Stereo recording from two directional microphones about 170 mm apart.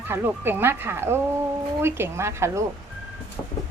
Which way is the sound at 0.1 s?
15° right (ahead or behind).